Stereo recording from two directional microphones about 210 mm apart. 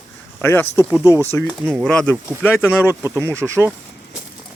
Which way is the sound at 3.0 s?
10° right (ahead or behind).